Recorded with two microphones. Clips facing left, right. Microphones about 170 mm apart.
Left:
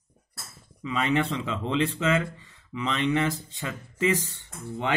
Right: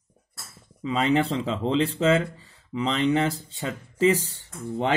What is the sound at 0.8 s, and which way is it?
Speech, 30° right (ahead or behind).